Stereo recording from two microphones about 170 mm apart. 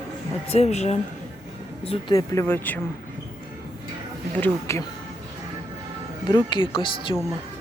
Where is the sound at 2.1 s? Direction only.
20° left (ahead or behind).